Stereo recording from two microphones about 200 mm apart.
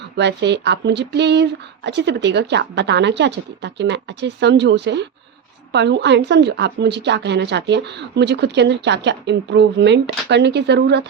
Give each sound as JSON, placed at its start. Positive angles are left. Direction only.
{"t": 0.2, "sound": "a woman's voice", "side_deg": -60}